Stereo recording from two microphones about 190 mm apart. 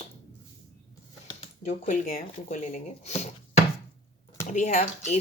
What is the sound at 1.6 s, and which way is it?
Speech, 40° left (ahead or behind).